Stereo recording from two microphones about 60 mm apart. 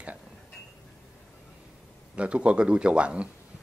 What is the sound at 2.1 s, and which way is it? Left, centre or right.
Speech, right.